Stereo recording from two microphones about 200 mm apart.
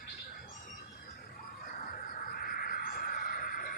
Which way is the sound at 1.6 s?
45° left (ahead or behind).